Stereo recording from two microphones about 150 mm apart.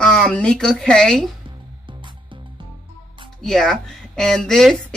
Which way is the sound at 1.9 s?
35° right (ahead or behind).